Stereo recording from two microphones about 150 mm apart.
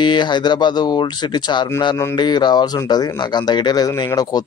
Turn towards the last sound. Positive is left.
turn(degrees=25)  # may be behind; listen again after turning